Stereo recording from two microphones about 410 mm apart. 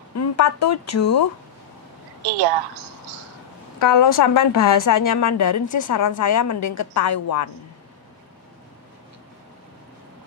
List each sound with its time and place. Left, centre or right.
0.1 s speech: left
3.8 s a woman's voice: left